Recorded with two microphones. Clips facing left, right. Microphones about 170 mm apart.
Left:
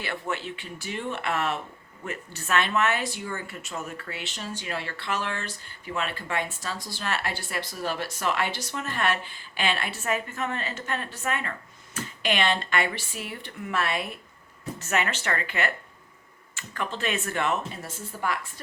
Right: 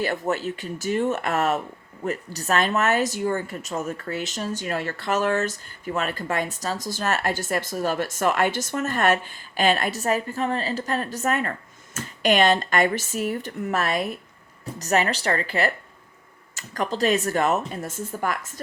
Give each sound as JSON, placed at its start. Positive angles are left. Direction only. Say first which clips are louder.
{"t": 0.0, "sound": "speech", "louder": "right 7 dB", "side_deg": -40}